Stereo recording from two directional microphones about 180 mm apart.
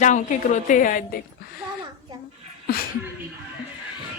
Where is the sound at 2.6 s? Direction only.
55° left (ahead or behind).